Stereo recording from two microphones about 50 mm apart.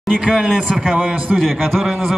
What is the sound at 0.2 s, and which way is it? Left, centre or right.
Speech, centre.